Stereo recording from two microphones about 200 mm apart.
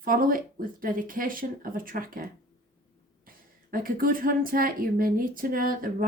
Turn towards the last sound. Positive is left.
turn(degrees=-45)  # may be behind; listen again after turning